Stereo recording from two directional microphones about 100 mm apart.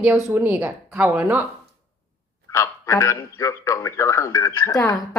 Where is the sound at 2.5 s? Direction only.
30° left (ahead or behind).